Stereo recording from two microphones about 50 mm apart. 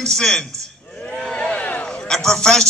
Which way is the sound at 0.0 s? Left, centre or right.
Centre.